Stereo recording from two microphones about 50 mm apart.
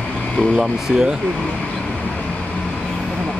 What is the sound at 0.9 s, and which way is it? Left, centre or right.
Speech, centre.